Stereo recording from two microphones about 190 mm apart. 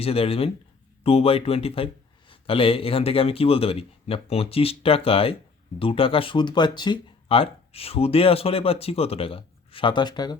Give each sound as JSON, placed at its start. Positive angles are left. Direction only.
{"t": 0.0, "sound": "speech", "side_deg": 30}